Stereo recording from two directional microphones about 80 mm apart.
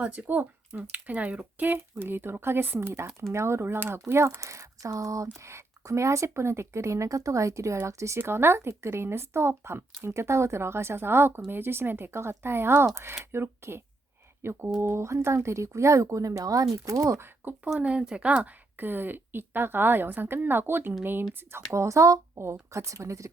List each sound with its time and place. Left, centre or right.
0.0 s speech: right
17.4 s speech: right
17.7 s speech: centre
21.5 s speech: right